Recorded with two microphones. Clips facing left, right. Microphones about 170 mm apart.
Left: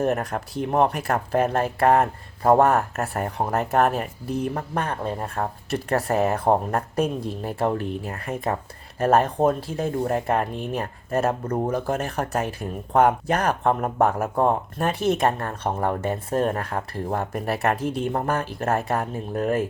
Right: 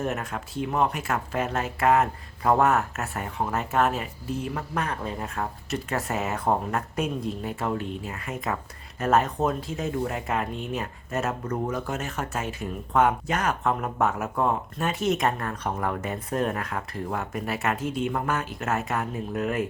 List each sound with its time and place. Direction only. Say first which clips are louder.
0.2 s speech: left 4 dB; 35° left (ahead or behind)
3.8 s speech: left 3 dB; 55° left (ahead or behind)
4.5 s speech: left 3 dB; 30° left (ahead or behind)
9.0 s speech: left 4 dB; 35° left (ahead or behind)